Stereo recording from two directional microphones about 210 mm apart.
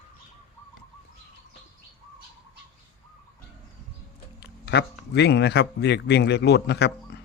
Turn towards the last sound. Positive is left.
turn(degrees=50)  # may be behind; listen again after turning